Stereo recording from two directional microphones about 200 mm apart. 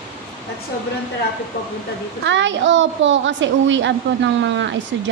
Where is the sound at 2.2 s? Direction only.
65° right (ahead or behind).